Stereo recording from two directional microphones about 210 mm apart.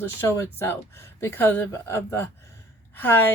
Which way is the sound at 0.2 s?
10° left (ahead or behind).